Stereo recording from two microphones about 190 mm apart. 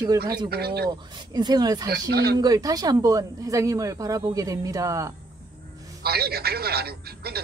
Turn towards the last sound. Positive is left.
turn(degrees=-55)  # may be behind; listen again after turning